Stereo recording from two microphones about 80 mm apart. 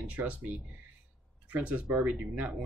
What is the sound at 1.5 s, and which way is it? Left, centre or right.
Speech, centre.